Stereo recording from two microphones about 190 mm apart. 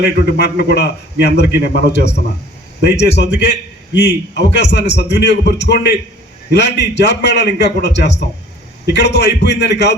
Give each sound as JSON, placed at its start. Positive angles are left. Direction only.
{"t": 0.0, "sound": "a man's voice", "side_deg": 60}